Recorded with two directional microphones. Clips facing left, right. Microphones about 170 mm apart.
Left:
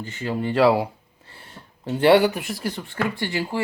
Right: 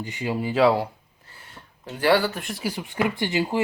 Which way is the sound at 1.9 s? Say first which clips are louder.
Left 5 dB; 25° left (ahead or behind).